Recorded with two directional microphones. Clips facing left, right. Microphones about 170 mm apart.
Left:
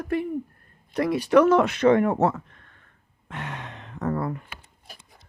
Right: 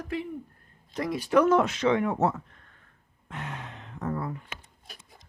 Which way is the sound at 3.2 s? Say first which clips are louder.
Left 3 dB; 80° left.